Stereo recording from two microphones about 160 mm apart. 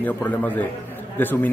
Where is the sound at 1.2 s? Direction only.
10° left (ahead or behind).